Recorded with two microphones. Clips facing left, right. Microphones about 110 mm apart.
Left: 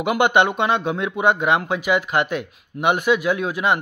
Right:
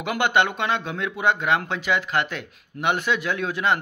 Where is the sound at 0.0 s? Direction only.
15° left (ahead or behind).